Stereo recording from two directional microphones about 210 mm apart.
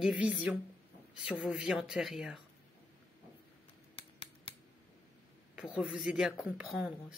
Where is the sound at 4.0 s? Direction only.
25° left (ahead or behind).